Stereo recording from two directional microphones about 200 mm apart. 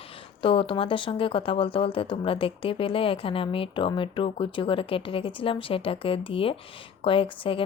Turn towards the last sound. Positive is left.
turn(degrees=25)  # may be behind; listen again after turning